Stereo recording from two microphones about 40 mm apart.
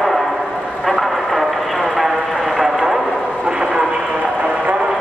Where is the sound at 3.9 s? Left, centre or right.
Right.